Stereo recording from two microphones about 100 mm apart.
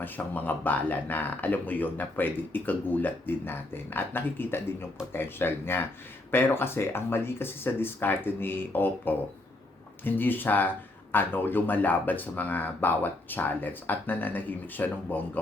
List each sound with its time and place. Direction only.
0.0 s speech: 15° left (ahead or behind)